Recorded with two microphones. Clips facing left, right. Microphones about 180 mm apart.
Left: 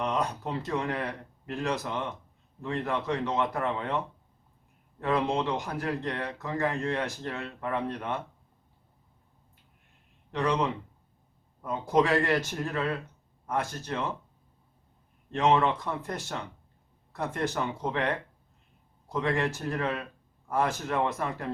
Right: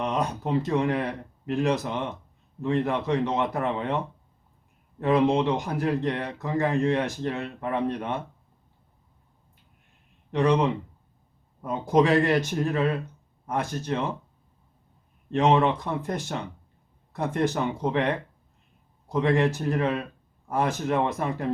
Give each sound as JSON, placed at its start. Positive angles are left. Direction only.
{"t": 0.0, "sound": "a man's voice", "side_deg": -20}
{"t": 4.9, "sound": "a man's voice", "side_deg": -20}
{"t": 10.3, "sound": "a man's voice", "side_deg": -20}
{"t": 15.3, "sound": "a man's voice", "side_deg": -20}